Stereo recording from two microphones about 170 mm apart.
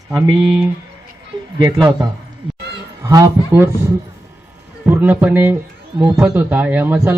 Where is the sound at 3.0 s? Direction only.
20° right (ahead or behind).